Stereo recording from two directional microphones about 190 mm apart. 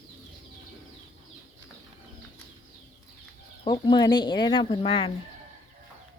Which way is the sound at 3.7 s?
25° left (ahead or behind).